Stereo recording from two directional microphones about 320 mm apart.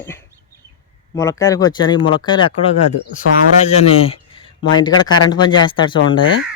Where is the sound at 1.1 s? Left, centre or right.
Centre.